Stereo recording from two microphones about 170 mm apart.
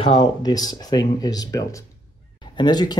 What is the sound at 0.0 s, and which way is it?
Speech, 25° left (ahead or behind).